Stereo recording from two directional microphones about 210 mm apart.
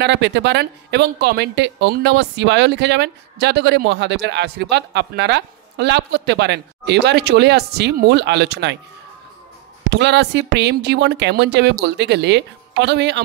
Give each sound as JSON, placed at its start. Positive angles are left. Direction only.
{"t": 0.0, "sound": "a woman's voice", "side_deg": -55}
{"t": 9.8, "sound": "a woman's voice", "side_deg": -55}